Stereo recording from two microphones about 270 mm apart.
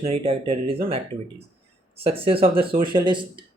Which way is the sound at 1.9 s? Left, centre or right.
Right.